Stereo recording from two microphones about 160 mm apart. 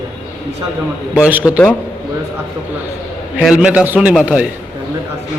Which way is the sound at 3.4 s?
5° right (ahead or behind).